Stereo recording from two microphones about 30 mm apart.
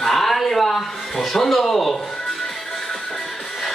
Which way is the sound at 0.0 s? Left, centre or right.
Centre.